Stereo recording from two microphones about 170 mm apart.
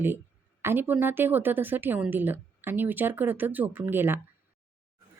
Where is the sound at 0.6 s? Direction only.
10° right (ahead or behind).